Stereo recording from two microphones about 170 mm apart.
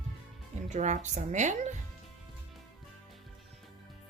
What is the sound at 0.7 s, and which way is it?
Speech, 45° right (ahead or behind).